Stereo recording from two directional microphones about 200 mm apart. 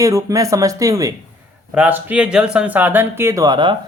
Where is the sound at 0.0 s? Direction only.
15° right (ahead or behind).